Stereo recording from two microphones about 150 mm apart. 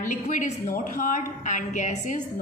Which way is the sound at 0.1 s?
55° left (ahead or behind).